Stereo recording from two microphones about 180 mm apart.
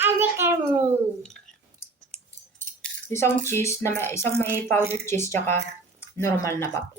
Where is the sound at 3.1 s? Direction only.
15° left (ahead or behind).